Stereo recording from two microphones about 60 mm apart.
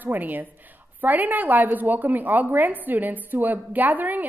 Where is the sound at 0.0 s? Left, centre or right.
Right.